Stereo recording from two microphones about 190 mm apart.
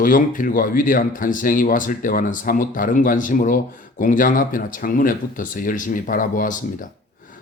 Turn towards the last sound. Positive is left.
turn(degrees=45)  # may be behind; listen again after turning